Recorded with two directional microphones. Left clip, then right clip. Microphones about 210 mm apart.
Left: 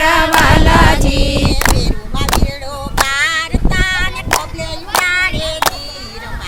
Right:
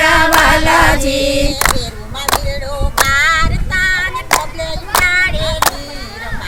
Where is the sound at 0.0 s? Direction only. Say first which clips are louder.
Right 1 dB; 50° left (ahead or behind).